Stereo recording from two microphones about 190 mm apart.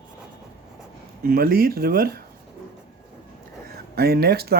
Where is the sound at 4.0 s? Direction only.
55° right (ahead or behind).